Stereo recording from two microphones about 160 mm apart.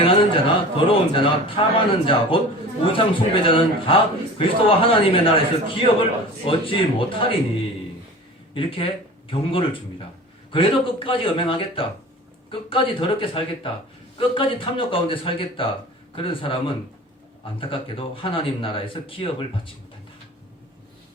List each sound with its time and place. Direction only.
0.0 s a man's voice: 35° left (ahead or behind)
8.5 s a man's voice: 35° left (ahead or behind)